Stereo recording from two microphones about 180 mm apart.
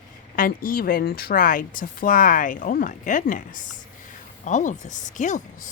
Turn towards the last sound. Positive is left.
turn(degrees=45)  # may be behind; listen again after turning